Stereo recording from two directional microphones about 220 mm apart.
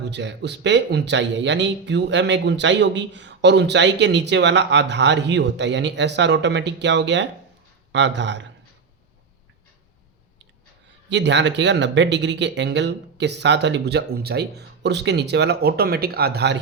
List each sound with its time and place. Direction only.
0.1 s a man's voice: 50° right (ahead or behind)
11.1 s speech: 55° right (ahead or behind)